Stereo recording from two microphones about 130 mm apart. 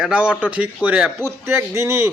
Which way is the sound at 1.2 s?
20° right (ahead or behind).